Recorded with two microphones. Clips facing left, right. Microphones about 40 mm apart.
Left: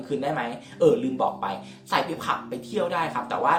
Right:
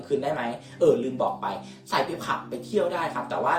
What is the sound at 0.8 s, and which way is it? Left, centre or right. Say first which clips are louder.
Speech: left 1 dB; left.